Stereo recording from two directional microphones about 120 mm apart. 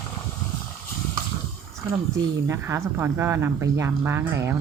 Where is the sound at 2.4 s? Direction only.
20° right (ahead or behind).